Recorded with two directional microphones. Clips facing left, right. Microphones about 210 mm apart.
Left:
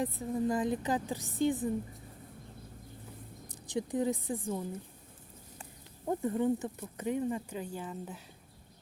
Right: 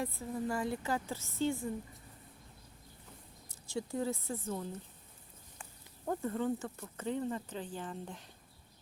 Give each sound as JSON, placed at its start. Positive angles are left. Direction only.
{"t": 0.0, "sound": "a woman's voice", "side_deg": 20}
{"t": 3.5, "sound": "speech", "side_deg": 15}
{"t": 6.1, "sound": "speech", "side_deg": 15}